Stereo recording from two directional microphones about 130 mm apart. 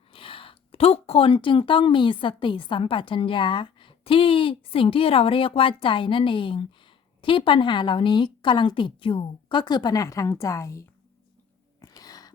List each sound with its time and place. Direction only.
0.1 s a woman's voice: 45° left (ahead or behind); by 10.8 s 25° left (ahead or behind)
11.8 s sneeze: 30° left (ahead or behind)